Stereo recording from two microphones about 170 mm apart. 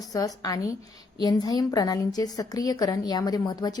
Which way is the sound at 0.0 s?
20° left (ahead or behind).